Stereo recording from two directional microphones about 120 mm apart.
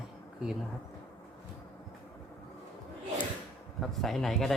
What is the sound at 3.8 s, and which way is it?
Speech, centre (ahead or behind).